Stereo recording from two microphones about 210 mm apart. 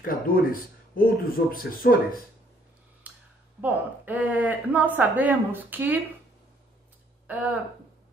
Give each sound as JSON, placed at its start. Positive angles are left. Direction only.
{"t": 0.0, "sound": "speech", "side_deg": 45}
{"t": 3.1, "sound": "a sound", "side_deg": -5}
{"t": 3.6, "sound": "a woman's voice", "side_deg": -10}
{"t": 7.3, "sound": "a woman's voice", "side_deg": -5}